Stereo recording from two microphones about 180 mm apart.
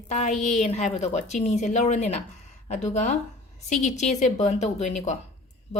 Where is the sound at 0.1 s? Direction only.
40° left (ahead or behind).